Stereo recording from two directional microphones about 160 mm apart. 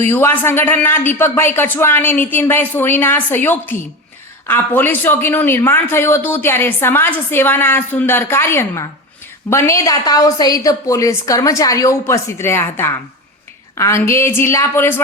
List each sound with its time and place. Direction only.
0.1 s a woman's voice: 15° left (ahead or behind)